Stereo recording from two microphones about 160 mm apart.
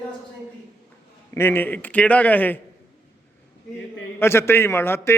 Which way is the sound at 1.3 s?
15° left (ahead or behind).